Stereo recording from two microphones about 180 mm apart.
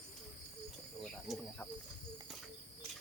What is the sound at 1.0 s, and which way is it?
Cricket, 5° left (ahead or behind).